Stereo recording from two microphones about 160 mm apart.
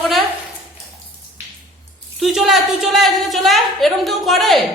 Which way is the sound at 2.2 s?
Centre (ahead or behind).